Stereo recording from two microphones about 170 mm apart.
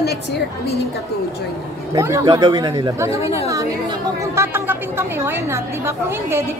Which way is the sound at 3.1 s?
35° left (ahead or behind).